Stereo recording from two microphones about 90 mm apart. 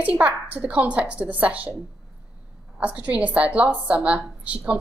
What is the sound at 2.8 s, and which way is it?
A woman's voice, 15° right (ahead or behind).